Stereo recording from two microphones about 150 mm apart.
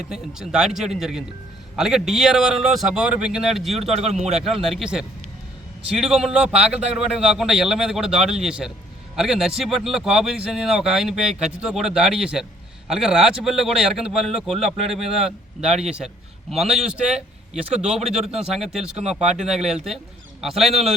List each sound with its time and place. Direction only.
0.0 s speech: 5° right (ahead or behind)
3.9 s a man's voice: 45° right (ahead or behind)
4.4 s a man's voice: centre (ahead or behind)